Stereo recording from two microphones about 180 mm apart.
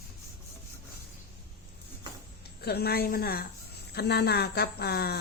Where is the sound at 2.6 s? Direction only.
60° left (ahead or behind).